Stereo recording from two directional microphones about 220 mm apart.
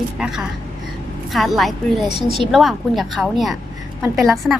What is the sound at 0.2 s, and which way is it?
A woman's voice, centre (ahead or behind).